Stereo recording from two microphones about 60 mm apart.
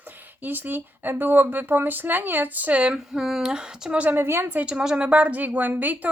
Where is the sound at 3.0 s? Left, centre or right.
Centre.